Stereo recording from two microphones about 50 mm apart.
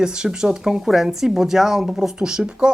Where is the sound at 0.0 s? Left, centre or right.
Centre.